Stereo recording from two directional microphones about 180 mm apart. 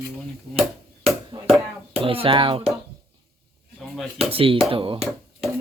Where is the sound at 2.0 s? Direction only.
30° right (ahead or behind).